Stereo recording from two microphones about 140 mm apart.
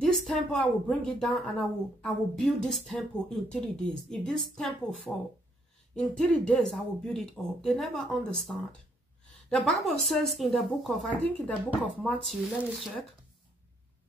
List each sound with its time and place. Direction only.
0.0 s a woman's voice: 5° left (ahead or behind)